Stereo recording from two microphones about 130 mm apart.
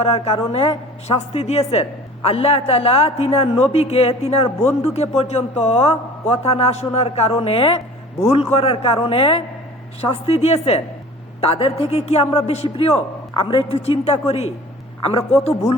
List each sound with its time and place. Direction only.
0.0 s a woman's voice: 50° left (ahead or behind)